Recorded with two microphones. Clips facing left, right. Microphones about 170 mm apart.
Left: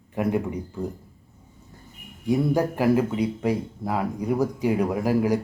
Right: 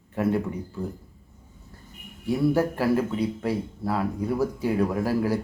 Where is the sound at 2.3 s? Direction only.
15° left (ahead or behind).